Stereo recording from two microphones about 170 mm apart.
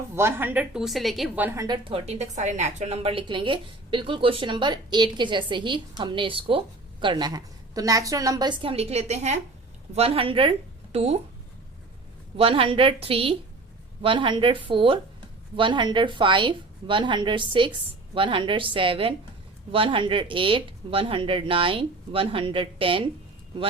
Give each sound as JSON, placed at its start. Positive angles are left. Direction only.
{"t": 0.2, "sound": "a woman's voice", "side_deg": -15}
{"t": 1.5, "sound": "a woman's voice", "side_deg": -20}
{"t": 12.4, "sound": "a woman's voice", "side_deg": -35}